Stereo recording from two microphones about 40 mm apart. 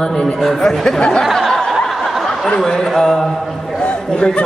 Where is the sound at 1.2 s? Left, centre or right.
Centre.